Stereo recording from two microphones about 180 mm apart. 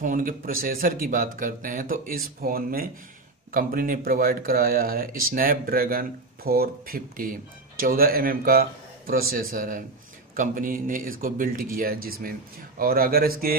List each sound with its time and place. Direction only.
0.0 s speech: 45° right (ahead or behind)